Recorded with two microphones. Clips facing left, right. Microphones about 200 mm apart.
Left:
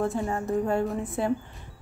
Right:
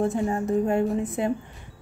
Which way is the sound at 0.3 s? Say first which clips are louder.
Right 3 dB; 20° right (ahead or behind).